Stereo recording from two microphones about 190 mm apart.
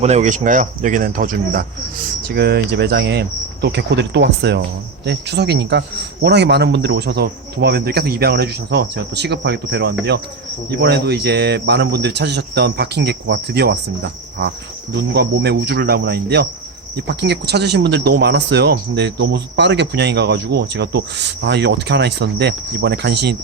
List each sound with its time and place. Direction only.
0.0 s speech: 35° right (ahead or behind); by 23.4 s 60° right (ahead or behind)